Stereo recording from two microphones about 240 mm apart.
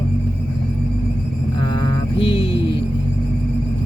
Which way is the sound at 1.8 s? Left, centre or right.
Left.